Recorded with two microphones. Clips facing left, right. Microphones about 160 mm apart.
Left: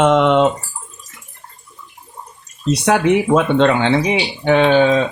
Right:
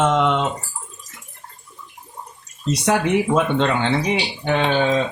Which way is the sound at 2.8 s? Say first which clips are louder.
Left 4 dB; 85° left.